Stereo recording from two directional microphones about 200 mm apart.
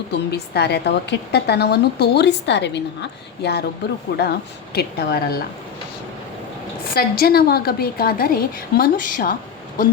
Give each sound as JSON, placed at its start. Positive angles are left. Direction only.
{"t": 0.1, "sound": "a woman's voice", "side_deg": 55}
{"t": 6.9, "sound": "a woman's voice", "side_deg": 50}